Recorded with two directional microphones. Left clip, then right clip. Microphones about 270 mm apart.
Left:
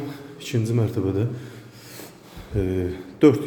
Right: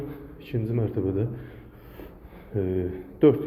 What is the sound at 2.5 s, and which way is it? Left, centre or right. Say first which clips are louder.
Speech: left 2 dB; left.